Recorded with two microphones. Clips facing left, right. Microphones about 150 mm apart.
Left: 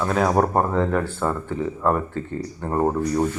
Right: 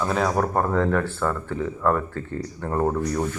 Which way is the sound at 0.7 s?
10° left (ahead or behind).